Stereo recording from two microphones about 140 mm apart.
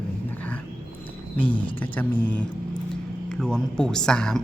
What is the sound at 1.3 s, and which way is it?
Speech, 35° left (ahead or behind).